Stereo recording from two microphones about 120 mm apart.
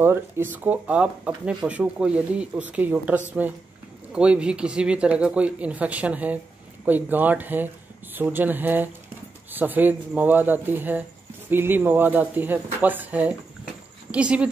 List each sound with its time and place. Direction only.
0.0 s speech: 20° right (ahead or behind)